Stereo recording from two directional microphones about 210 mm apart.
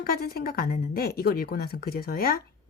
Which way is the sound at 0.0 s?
45° left (ahead or behind).